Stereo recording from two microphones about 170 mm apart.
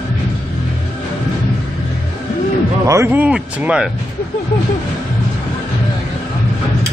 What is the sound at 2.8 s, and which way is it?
Speech, 15° right (ahead or behind).